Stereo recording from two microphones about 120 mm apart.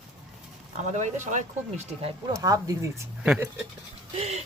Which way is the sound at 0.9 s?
75° right (ahead or behind).